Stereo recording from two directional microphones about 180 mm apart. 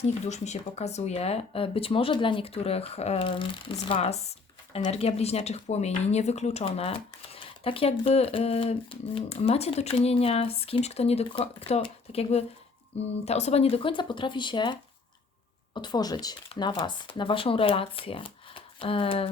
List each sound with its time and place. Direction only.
0.3 s speech: 40° left (ahead or behind)